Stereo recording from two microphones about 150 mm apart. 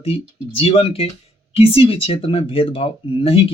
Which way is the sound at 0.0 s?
40° left (ahead or behind).